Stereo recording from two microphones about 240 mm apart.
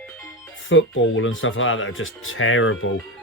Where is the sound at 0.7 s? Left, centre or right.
Left.